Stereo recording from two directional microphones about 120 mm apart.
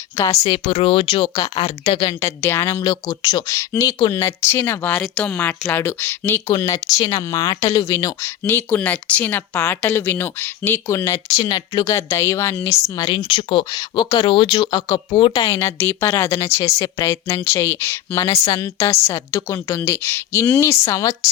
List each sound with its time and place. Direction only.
0.4 s speech: 55° left (ahead or behind)
2.2 s speech: 20° left (ahead or behind)
13.1 s speech: 50° left (ahead or behind)
13.7 s speech: 35° left (ahead or behind)